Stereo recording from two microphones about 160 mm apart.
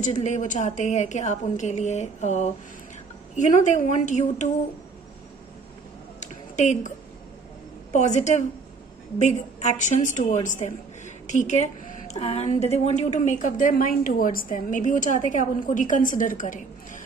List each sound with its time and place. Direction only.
0.0 s a woman's voice: 50° left (ahead or behind)
6.1 s a sound: 45° left (ahead or behind)
7.9 s a woman's voice: 45° left (ahead or behind)